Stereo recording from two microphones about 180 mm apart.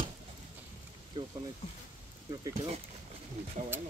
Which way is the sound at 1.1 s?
25° right (ahead or behind).